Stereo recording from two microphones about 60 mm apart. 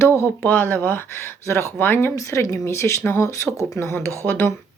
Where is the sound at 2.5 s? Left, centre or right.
Left.